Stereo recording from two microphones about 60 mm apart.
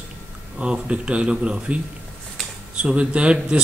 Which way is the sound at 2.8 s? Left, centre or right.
Centre.